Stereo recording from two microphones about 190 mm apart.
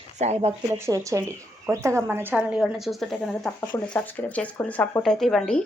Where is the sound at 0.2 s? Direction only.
35° right (ahead or behind).